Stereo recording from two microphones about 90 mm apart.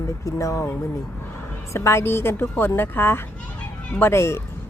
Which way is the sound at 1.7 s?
30° left (ahead or behind).